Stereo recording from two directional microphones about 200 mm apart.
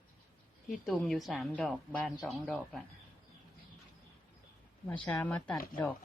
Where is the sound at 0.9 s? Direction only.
Centre (ahead or behind).